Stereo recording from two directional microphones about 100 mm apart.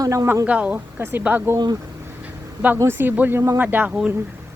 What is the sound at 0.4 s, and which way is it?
Speech, 10° right (ahead or behind).